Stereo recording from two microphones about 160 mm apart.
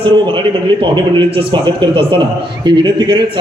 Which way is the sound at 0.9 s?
30° right (ahead or behind).